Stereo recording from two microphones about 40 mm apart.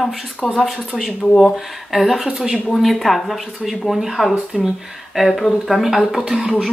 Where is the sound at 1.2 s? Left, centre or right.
Left.